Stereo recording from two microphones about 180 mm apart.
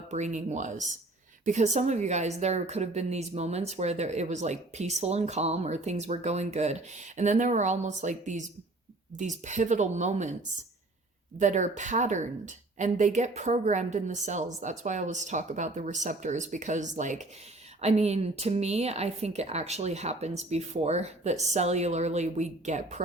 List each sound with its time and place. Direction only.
0.1 s a woman's voice: 40° right (ahead or behind)
11.3 s a woman's voice: 40° right (ahead or behind)